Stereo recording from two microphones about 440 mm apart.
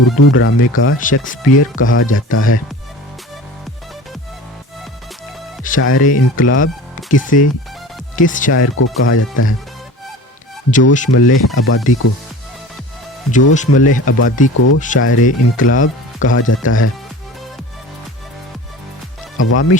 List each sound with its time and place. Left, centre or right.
0.2 s speech: left
5.6 s speech: left
10.7 s speech: centre
11.1 s speech: left
13.3 s speech: centre
19.4 s speech: left